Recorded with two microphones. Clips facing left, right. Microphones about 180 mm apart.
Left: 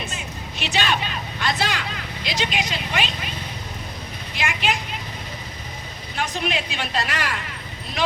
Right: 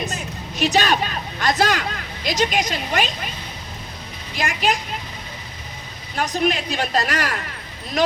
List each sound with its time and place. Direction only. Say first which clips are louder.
0.0 s a woman's voice: right 4 dB; 40° right (ahead or behind)
4.4 s a woman's voice: right 3 dB; 40° right (ahead or behind)
6.1 s a woman's voice: right 5 dB; 40° right (ahead or behind)